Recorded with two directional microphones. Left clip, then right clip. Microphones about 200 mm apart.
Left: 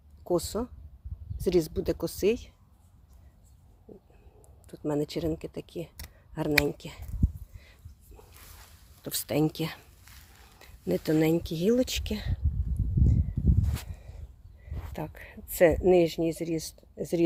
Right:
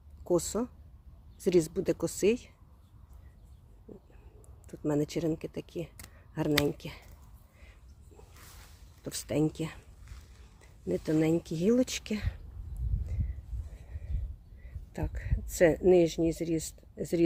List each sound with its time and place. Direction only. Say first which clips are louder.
0.3 s speech: left 1 dB; centre (ahead or behind)
4.6 s speech: left 1 dB; centre (ahead or behind)
9.0 s speech: left 3 dB; 20° left (ahead or behind); by 12.4 s centre (ahead or behind)
14.9 s speech: left 1 dB; centre (ahead or behind)